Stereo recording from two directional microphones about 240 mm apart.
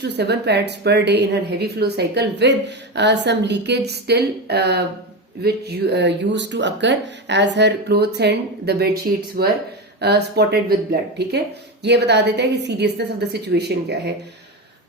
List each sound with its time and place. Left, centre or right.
0.0 s a woman's voice: right